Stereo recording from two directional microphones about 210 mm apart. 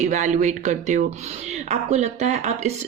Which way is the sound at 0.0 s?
35° right (ahead or behind).